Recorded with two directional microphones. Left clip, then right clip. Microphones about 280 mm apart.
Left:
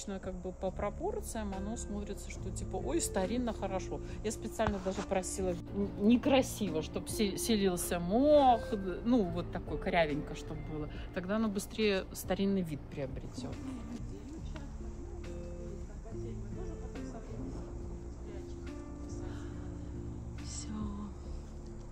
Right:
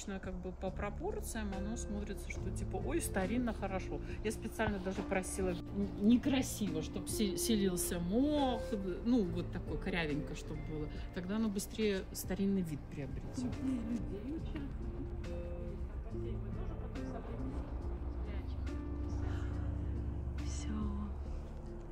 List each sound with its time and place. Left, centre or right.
0.0 s speech: left
6.0 s a woman's voice: centre
12.5 s speech: left
20.6 s music: centre